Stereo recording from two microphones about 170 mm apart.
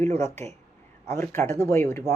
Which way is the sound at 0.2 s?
40° right (ahead or behind).